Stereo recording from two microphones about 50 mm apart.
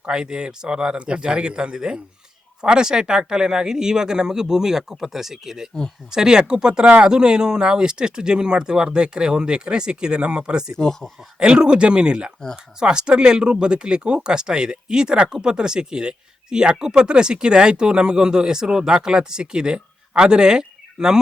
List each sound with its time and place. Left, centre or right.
0.0 s speech: centre
10.7 s speech: centre
11.3 s speech: centre